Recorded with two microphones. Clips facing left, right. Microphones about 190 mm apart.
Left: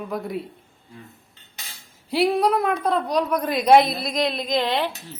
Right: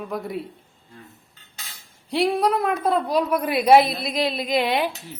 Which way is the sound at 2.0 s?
Centre (ahead or behind).